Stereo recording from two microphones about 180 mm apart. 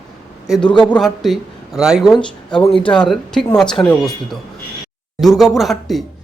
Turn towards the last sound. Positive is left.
turn(degrees=0)  # may be behind; listen again after turning